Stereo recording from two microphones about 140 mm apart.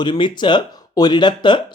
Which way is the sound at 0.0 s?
35° left (ahead or behind).